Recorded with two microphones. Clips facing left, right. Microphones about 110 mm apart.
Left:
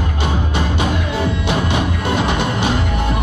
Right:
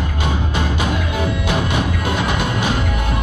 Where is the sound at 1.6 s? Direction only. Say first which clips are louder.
Left 1 dB; 25° left (ahead or behind).